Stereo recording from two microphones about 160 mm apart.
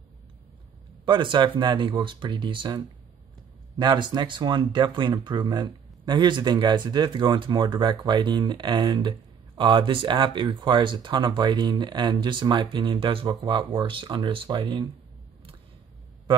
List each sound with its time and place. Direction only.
1.0 s speech: 30° right (ahead or behind)